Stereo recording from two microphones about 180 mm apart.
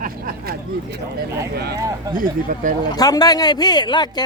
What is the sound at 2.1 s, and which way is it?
Speech, 50° right (ahead or behind).